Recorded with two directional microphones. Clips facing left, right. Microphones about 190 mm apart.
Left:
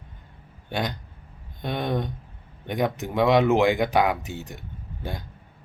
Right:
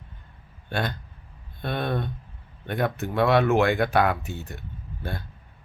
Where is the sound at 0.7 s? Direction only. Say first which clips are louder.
Even; 15° left (ahead or behind).